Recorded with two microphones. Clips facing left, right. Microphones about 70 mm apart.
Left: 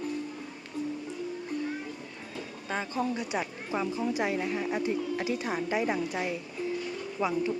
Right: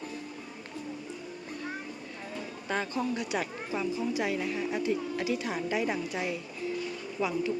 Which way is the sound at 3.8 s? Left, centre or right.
Left.